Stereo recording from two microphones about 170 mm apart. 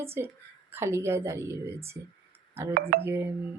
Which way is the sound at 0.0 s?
15° right (ahead or behind).